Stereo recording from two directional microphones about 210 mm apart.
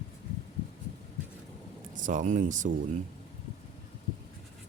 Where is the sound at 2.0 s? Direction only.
40° right (ahead or behind).